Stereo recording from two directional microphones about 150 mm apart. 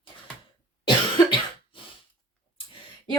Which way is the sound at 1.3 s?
35° left (ahead or behind).